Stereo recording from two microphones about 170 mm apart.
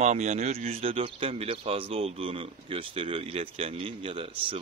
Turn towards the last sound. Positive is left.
turn(degrees=-30)  # may be behind; listen again after turning